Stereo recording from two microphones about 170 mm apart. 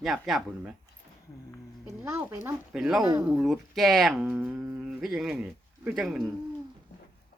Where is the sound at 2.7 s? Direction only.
Centre (ahead or behind).